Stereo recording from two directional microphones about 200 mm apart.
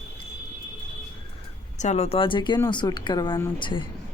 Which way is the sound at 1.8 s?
35° left (ahead or behind).